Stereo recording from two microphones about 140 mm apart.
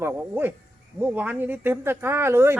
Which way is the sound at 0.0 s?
15° right (ahead or behind).